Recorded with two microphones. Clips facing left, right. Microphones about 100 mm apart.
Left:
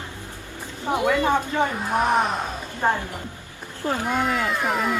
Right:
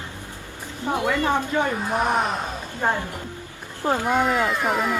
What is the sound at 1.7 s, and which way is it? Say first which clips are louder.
Speech: left 1 dB; centre (ahead or behind).